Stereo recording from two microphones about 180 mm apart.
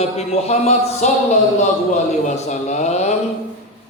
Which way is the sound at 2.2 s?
40° left (ahead or behind).